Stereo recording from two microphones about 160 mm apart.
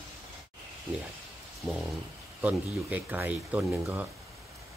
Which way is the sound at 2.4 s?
10° right (ahead or behind).